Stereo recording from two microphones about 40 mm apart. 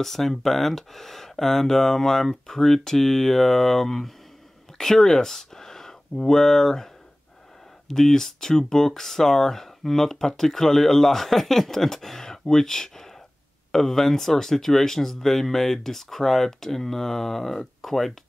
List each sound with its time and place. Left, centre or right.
0.0 s speech: centre
7.9 s speech: centre